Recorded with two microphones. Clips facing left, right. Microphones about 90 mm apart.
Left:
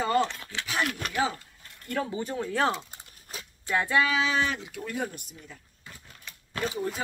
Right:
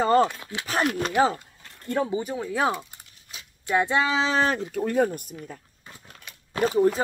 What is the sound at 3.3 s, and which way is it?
Dog, 40° left (ahead or behind).